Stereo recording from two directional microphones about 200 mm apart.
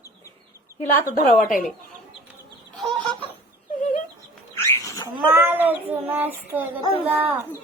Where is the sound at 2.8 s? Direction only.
Centre (ahead or behind).